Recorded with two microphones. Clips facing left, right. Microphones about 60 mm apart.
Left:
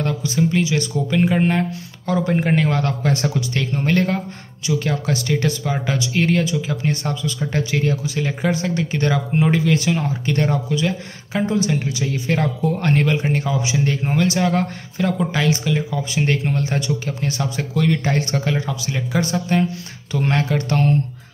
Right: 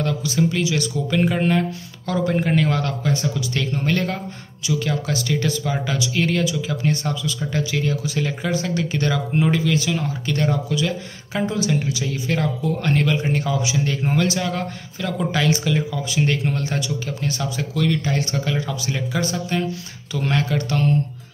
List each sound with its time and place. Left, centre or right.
0.0 s a sound: left
0.5 s speech: left
8.1 s speech: centre
11.3 s speech: centre
14.2 s speech: left
15.1 s speech: centre
15.9 s speech: left
18.0 s speech: left